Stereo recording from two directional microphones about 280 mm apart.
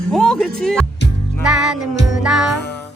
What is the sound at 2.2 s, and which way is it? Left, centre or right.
Music, centre.